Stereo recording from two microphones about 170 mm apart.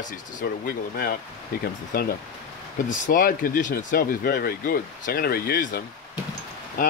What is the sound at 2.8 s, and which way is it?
Speech, 50° left (ahead or behind).